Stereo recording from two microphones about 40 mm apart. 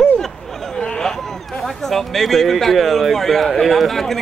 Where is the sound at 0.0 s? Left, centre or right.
Centre.